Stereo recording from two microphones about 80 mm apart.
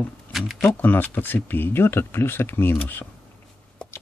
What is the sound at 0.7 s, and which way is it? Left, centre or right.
Speech, left.